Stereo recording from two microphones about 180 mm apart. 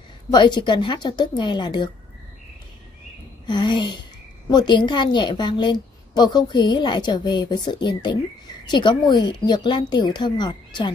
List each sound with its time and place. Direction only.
0.3 s a woman's voice: 25° left (ahead or behind)
3.4 s a woman's voice: 25° left (ahead or behind)